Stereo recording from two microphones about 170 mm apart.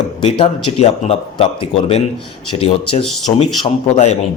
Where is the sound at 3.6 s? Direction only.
35° left (ahead or behind).